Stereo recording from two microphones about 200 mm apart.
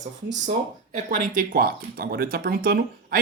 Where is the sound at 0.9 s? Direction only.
40° right (ahead or behind).